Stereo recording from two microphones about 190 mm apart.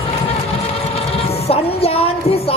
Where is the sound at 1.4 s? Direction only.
30° left (ahead or behind).